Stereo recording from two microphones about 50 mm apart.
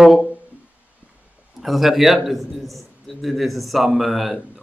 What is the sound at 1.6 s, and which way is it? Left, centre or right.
A man's voice, centre.